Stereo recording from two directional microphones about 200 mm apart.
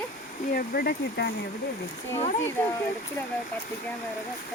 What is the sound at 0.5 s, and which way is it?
Speech, 50° left (ahead or behind).